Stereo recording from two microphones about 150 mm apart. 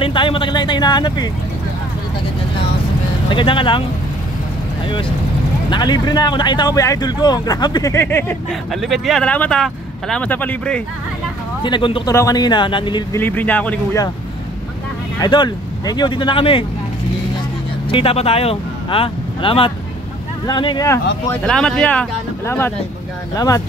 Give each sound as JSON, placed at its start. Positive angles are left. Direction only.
{"t": 0.0, "sound": "vehicle", "side_deg": 35}
{"t": 3.3, "sound": "speech", "side_deg": 35}
{"t": 5.7, "sound": "speech", "side_deg": 30}
{"t": 8.5, "sound": "speech", "side_deg": 0}
{"t": 11.6, "sound": "speech", "side_deg": 35}
{"t": 12.1, "sound": "speech", "side_deg": 20}
{"t": 13.1, "sound": "speech", "side_deg": 10}
{"t": 15.1, "sound": "speech", "side_deg": 30}
{"t": 17.8, "sound": "speech", "side_deg": 35}
{"t": 21.5, "sound": "speech", "side_deg": 5}
{"t": 23.3, "sound": "speech", "side_deg": 25}